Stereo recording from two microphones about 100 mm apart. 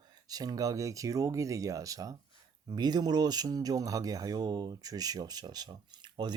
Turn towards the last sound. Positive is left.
turn(degrees=-45)  # may be behind; listen again after turning